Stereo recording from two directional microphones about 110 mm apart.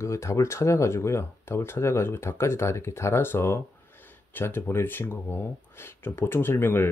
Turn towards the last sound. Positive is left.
turn(degrees=20)  # may be behind; listen again after turning